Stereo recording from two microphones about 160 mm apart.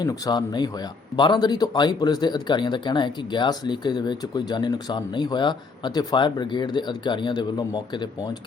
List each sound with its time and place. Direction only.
0.0 s speech: 25° left (ahead or behind)